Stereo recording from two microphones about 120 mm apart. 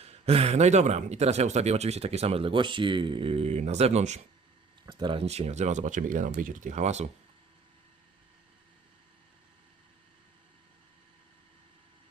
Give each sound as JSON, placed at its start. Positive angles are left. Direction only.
{"t": 0.0, "sound": "speech", "side_deg": -55}
{"t": 4.9, "sound": "speech", "side_deg": -40}
{"t": 5.2, "sound": "speech", "side_deg": -65}